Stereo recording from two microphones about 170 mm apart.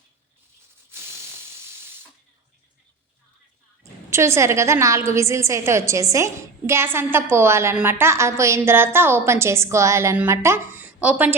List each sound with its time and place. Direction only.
4.1 s a woman's voice: 15° right (ahead or behind)